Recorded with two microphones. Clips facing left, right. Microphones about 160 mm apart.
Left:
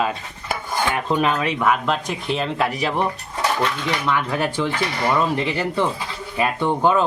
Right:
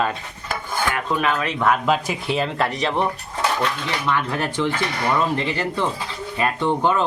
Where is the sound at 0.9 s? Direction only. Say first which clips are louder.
Left 3 dB; 25° left (ahead or behind).